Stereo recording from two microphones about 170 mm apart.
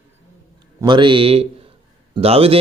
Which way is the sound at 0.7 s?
25° right (ahead or behind).